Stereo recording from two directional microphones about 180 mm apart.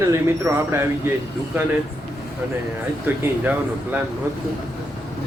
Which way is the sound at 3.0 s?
10° right (ahead or behind).